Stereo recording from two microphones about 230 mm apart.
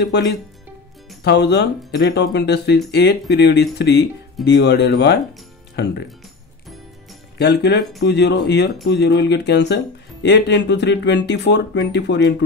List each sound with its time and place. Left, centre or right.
0.0 s speech: left
7.3 s speech: left